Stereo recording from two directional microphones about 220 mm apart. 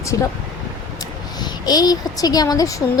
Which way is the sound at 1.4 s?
20° left (ahead or behind).